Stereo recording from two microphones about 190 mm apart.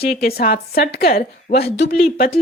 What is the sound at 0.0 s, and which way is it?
Speech, 55° left (ahead or behind).